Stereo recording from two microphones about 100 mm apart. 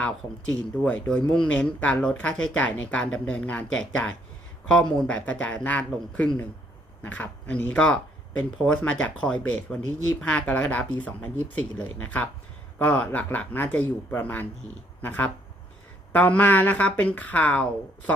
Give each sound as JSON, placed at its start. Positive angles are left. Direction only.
{"t": 0.9, "sound": "speech", "side_deg": 10}